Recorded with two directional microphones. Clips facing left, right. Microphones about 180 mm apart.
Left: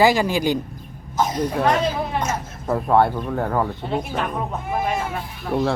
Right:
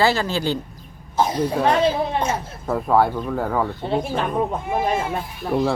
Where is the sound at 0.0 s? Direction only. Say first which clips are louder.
Left 3 dB; 15° left (ahead or behind).